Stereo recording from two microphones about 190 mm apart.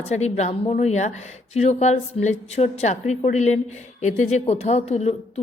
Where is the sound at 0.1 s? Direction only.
35° left (ahead or behind).